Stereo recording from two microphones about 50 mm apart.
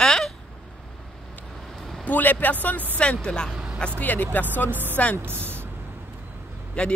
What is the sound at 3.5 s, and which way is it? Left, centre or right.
Vehicle, centre.